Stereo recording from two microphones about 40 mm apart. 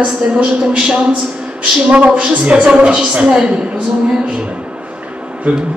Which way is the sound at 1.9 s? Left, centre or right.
Right.